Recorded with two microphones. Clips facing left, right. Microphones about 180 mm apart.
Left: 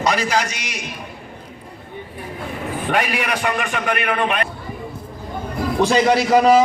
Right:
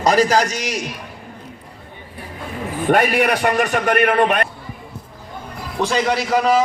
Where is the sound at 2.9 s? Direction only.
55° right (ahead or behind).